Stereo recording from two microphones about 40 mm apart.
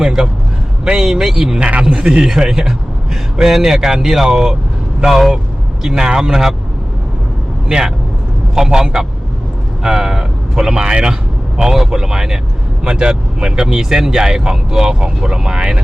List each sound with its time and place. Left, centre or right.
0.0 s speech: centre
1.5 s speech: right; by 6.5 s centre
7.7 s speech: centre